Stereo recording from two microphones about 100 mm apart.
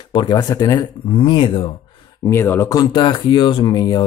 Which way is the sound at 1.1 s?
55° left (ahead or behind).